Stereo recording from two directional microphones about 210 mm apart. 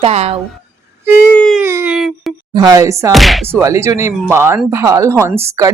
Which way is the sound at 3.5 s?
15° right (ahead or behind).